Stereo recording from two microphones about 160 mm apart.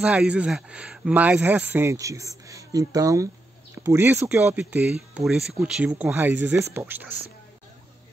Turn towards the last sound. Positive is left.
turn(degrees=-10)  # may be behind; listen again after turning